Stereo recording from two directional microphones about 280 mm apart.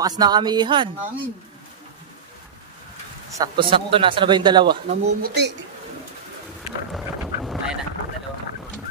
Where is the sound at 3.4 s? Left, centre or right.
Centre.